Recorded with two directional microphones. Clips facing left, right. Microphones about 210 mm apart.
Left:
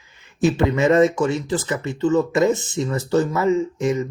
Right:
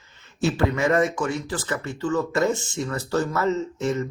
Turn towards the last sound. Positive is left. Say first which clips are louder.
# left 5 dB
turn(degrees=15)  # may be behind; listen again after turning